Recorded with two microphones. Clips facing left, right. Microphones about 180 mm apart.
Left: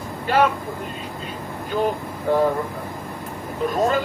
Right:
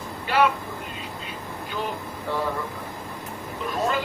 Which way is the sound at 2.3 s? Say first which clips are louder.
Left 9 dB; 50° left (ahead or behind).